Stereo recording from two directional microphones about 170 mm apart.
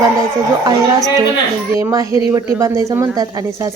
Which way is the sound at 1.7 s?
20° right (ahead or behind).